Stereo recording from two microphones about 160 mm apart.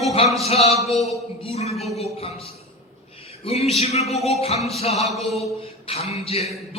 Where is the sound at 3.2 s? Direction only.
40° left (ahead or behind).